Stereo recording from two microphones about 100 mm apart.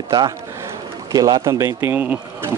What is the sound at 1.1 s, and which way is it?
Speech, 40° right (ahead or behind).